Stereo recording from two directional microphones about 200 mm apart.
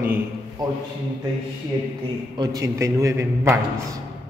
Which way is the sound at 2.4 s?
15° right (ahead or behind).